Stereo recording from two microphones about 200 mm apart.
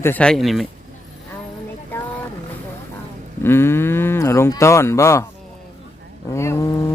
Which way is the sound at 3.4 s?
10° left (ahead or behind).